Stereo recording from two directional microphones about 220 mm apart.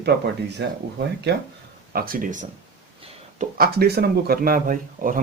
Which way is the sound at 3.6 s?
45° right (ahead or behind).